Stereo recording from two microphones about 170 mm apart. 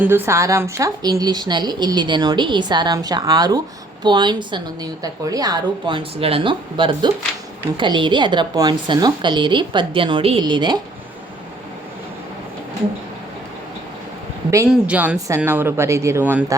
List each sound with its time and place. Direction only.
0.0 s a woman's voice: 15° right (ahead or behind)
14.7 s speech: 10° right (ahead or behind)